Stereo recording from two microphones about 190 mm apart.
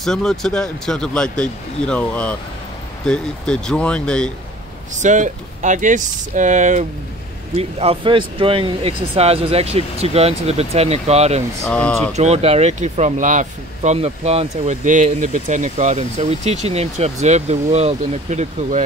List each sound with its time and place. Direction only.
0.0 s speech: centre (ahead or behind)
5.0 s speech: 40° right (ahead or behind)
11.6 s speech: 5° left (ahead or behind)
12.1 s speech: 35° right (ahead or behind)